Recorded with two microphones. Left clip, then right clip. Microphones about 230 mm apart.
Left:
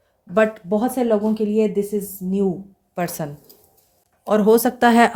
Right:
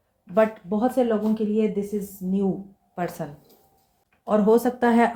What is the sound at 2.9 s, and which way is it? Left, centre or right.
Speech, left.